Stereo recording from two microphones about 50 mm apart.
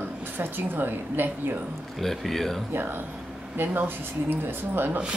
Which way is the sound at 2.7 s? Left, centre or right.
Right.